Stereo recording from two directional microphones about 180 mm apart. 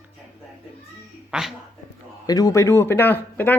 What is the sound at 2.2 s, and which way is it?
Speech, 20° left (ahead or behind).